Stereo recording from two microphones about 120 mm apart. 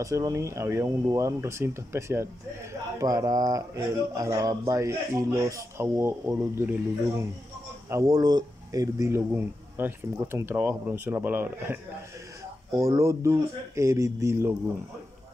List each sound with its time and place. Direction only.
0.0 s speech: 25° right (ahead or behind)
7.9 s speech: 30° right (ahead or behind)